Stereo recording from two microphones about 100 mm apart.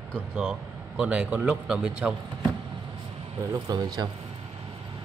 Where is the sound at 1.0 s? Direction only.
10° right (ahead or behind).